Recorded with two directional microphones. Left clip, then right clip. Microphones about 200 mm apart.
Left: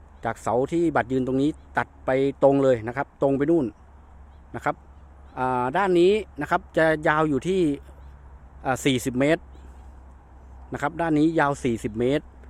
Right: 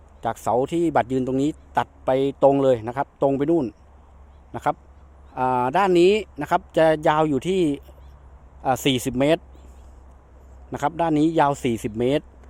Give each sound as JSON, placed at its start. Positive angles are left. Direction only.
{"t": 0.2, "sound": "a man's voice", "side_deg": -5}
{"t": 10.7, "sound": "a man's voice", "side_deg": -10}